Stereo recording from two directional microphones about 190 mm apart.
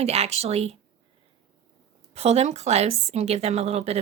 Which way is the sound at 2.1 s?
35° right (ahead or behind).